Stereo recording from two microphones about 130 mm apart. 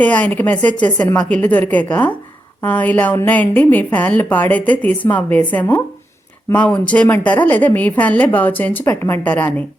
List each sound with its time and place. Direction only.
0.0 s a woman's voice: 10° left (ahead or behind)